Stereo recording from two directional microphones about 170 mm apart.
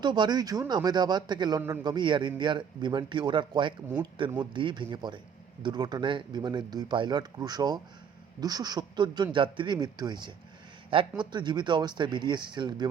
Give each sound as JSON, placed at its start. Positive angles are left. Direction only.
{"t": 0.0, "sound": "a man's voice", "side_deg": -25}